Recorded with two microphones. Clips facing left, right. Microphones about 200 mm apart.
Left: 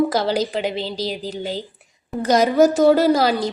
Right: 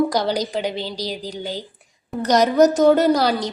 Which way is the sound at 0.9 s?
40° right (ahead or behind).